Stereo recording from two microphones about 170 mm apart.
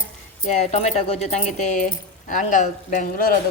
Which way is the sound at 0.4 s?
40° left (ahead or behind).